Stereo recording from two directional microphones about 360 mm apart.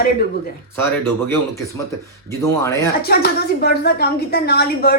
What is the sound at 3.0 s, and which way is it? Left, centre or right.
A woman's voice, left.